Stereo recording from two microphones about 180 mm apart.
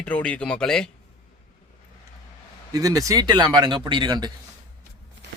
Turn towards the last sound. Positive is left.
turn(degrees=-25)  # may be behind; listen again after turning